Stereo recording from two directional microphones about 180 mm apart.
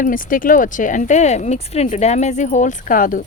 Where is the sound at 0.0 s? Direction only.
50° left (ahead or behind).